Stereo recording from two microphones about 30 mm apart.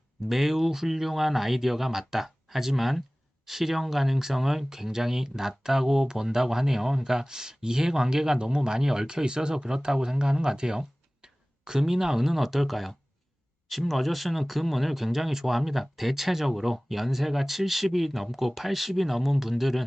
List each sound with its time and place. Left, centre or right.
0.3 s speech: centre